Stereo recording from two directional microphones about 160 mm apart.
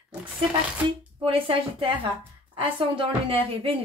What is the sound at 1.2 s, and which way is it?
Speech, 35° right (ahead or behind).